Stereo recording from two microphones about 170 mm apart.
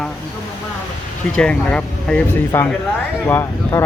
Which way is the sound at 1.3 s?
5° left (ahead or behind).